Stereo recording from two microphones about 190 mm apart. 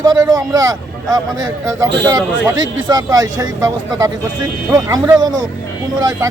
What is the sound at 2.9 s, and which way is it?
Speech, 20° right (ahead or behind).